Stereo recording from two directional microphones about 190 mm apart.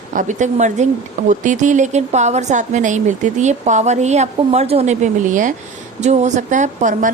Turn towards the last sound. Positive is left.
turn(degrees=-40)  # may be behind; listen again after turning